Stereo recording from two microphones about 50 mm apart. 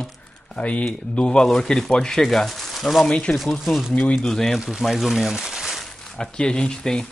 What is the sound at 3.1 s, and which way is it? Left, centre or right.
Speech, left.